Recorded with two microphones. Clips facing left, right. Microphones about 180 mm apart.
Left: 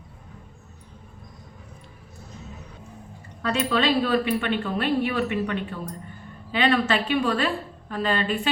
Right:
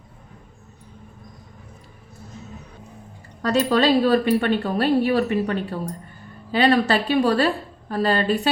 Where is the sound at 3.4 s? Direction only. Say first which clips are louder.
Right 5 dB; 40° right (ahead or behind).